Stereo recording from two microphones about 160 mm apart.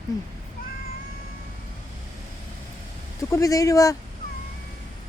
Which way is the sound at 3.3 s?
20° left (ahead or behind).